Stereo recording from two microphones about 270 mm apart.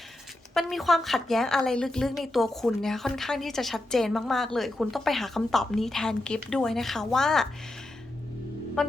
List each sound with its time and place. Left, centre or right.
0.5 s a woman's voice: centre
8.8 s a woman's voice: centre